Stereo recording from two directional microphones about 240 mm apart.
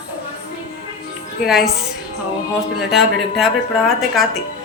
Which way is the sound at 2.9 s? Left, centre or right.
Centre.